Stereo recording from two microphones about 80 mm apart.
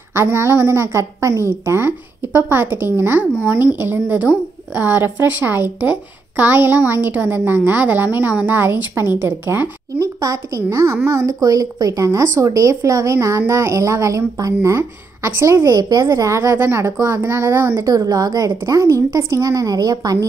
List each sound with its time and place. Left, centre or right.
0.1 s a woman's voice: right
9.9 s a woman's voice: right
15.7 s a woman's voice: right
16.1 s a woman's voice: right
16.5 s a woman's voice: right
17.7 s speech: right